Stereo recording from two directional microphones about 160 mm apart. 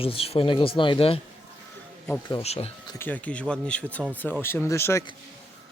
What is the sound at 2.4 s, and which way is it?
Speech, 40° left (ahead or behind).